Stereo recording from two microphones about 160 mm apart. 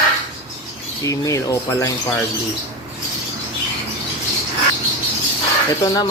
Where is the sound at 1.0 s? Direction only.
20° left (ahead or behind).